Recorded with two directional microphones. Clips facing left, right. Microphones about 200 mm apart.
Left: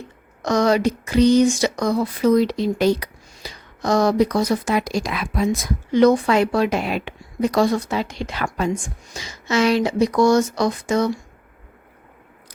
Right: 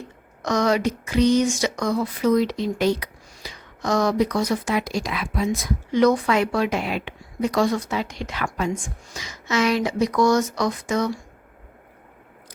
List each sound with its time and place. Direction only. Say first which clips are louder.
0.4 s speech: left 3 dB; 35° left (ahead or behind)
6.0 s speech: left 3 dB; 30° left (ahead or behind)